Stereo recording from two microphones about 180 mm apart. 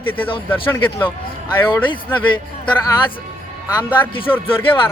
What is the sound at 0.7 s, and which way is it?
Speech, 10° left (ahead or behind).